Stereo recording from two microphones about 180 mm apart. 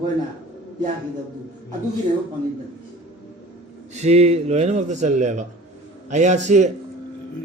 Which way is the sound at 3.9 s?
40° right (ahead or behind).